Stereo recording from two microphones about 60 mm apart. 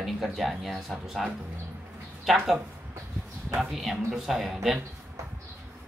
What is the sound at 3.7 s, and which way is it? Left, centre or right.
Speech, centre.